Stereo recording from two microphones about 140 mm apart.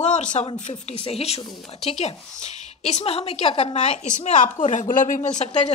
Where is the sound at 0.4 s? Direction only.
50° left (ahead or behind).